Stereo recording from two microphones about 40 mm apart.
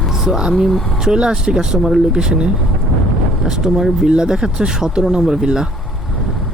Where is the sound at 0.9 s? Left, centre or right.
Centre.